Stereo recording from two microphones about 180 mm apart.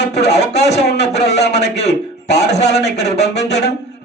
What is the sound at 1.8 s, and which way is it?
A man's voice, 40° left (ahead or behind).